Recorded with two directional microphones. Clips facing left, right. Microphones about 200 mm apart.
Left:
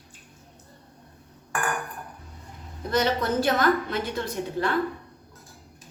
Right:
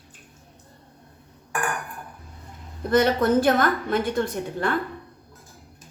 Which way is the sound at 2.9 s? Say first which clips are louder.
Right 5 dB; 50° right (ahead or behind).